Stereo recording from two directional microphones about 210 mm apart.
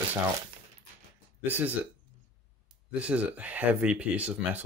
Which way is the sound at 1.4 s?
10° right (ahead or behind).